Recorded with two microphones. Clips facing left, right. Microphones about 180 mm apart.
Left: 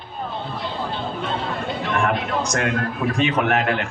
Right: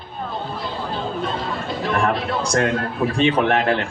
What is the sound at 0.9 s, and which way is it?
A man's voice, 40° right (ahead or behind).